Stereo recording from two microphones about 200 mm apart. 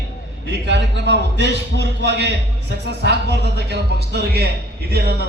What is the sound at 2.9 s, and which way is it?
Speech, 55° right (ahead or behind).